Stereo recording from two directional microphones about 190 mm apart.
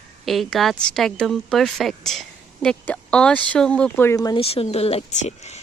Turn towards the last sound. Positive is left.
turn(degrees=35)  # may be behind; listen again after turning